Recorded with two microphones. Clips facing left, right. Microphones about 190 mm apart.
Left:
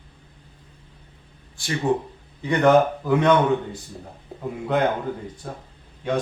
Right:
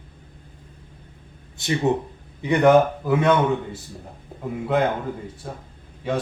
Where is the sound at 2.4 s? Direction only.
10° right (ahead or behind).